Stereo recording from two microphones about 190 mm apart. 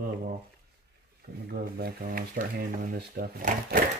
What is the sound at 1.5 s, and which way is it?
Speech, 50° right (ahead or behind).